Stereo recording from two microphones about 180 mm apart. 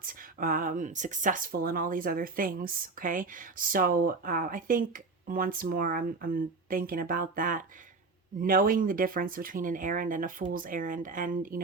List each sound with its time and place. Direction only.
0.0 s speech: 50° right (ahead or behind)